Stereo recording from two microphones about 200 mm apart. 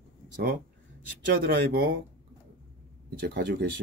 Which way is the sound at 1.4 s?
50° right (ahead or behind).